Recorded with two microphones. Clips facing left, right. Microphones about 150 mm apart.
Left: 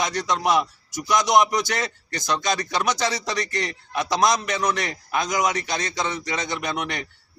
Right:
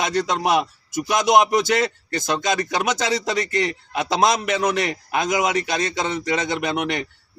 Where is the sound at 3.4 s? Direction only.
25° right (ahead or behind).